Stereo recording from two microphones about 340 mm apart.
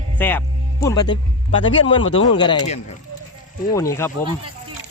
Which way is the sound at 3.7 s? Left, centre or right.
Centre.